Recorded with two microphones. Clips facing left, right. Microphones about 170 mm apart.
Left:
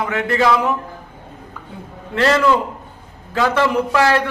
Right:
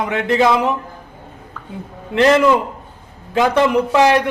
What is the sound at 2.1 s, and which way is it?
A man's voice, 20° right (ahead or behind).